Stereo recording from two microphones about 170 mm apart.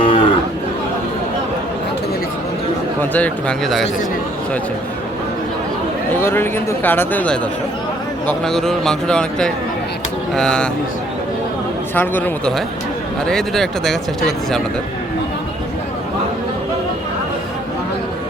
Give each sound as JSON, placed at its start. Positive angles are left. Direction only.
{"t": 0.0, "sound": "cattle", "side_deg": 30}
{"t": 3.0, "sound": "a man's voice", "side_deg": 10}
{"t": 6.2, "sound": "a man's voice", "side_deg": 15}
{"t": 11.9, "sound": "a man's voice", "side_deg": 10}